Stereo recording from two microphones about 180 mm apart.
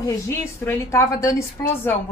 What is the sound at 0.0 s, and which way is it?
A woman's voice, 15° left (ahead or behind).